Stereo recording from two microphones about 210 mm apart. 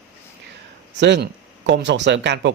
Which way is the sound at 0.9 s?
55° right (ahead or behind).